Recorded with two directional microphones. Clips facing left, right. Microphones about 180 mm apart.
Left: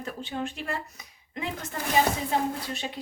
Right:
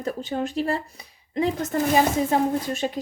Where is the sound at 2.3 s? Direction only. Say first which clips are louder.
Right 6 dB; 45° right (ahead or behind).